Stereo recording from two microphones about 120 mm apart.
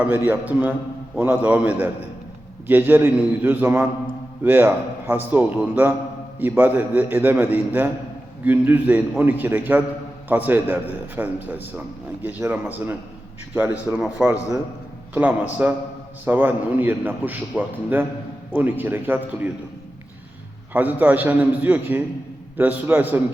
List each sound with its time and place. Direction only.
0.0 s a man's voice: 15° right (ahead or behind)
20.7 s a man's voice: 15° right (ahead or behind)